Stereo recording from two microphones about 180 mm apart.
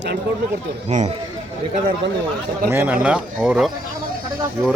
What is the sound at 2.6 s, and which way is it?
A man's voice, 10° right (ahead or behind).